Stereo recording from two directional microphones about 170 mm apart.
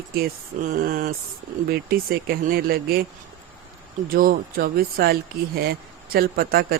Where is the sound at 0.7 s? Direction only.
55° right (ahead or behind).